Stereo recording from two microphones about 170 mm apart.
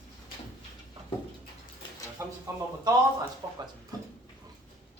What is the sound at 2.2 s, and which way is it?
Speech, 15° right (ahead or behind).